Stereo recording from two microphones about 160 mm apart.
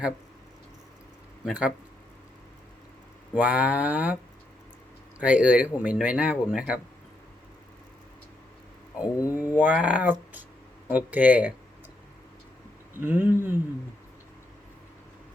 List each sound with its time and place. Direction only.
1.5 s speech: 5° right (ahead or behind)
3.3 s speech: 10° right (ahead or behind)
5.2 s speech: 10° right (ahead or behind)
9.0 s speech: 20° left (ahead or behind)
9.4 s speech: 10° right (ahead or behind)
13.0 s speech: 15° right (ahead or behind)